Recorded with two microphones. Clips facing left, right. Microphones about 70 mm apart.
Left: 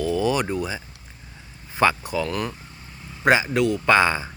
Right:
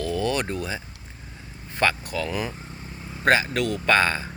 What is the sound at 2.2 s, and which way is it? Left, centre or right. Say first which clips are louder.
Speech: left 1 dB; centre.